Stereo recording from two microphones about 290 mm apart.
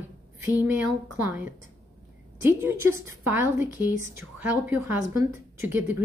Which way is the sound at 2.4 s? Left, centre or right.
Centre.